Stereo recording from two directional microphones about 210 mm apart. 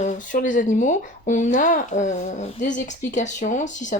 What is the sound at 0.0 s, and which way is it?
Speech, 35° left (ahead or behind).